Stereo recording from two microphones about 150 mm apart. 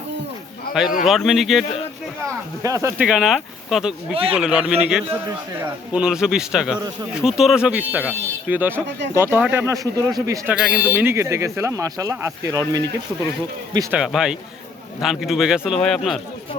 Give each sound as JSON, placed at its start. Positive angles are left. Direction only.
{"t": 1.0, "sound": "speech", "side_deg": 0}
{"t": 2.6, "sound": "speech", "side_deg": -20}
{"t": 3.1, "sound": "speech", "side_deg": 0}
{"t": 4.1, "sound": "speech", "side_deg": -40}
{"t": 4.4, "sound": "a man's voice", "side_deg": -5}
{"t": 10.5, "sound": "speech", "side_deg": -5}
{"t": 13.9, "sound": "speech", "side_deg": -5}